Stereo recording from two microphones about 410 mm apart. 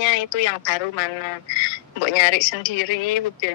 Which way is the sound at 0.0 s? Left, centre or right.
Left.